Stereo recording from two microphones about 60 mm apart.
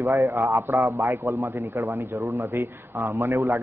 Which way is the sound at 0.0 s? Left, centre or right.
Right.